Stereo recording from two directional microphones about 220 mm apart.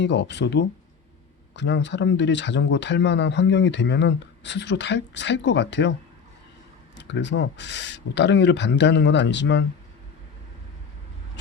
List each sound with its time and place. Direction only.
0.0 s speech: 50° left (ahead or behind)
6.9 s speech: 55° left (ahead or behind)